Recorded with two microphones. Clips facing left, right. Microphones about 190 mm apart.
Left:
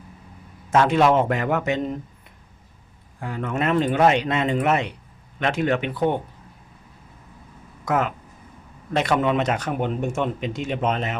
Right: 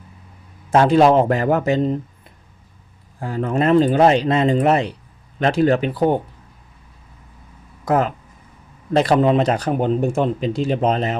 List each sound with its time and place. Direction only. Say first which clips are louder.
0.7 s speech: right 5 dB; 35° right (ahead or behind)
3.2 s speech: right 6 dB; 35° right (ahead or behind)
7.9 s speech: right 5 dB; 35° right (ahead or behind)